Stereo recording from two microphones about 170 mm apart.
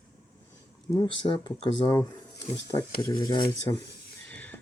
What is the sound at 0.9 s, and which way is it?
Speech, 25° left (ahead or behind).